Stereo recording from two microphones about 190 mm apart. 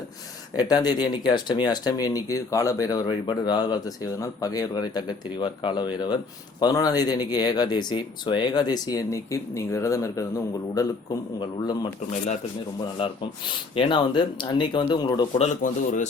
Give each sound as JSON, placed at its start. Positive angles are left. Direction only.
{"t": 0.5, "sound": "speech", "side_deg": 20}
{"t": 13.0, "sound": "speech", "side_deg": 30}
{"t": 15.6, "sound": "a man's voice", "side_deg": 40}